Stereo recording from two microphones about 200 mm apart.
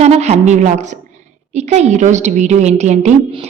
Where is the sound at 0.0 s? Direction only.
35° right (ahead or behind).